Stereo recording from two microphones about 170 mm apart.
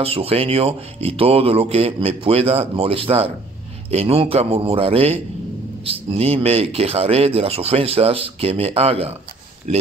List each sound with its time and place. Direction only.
0.0 s speech: 35° right (ahead or behind)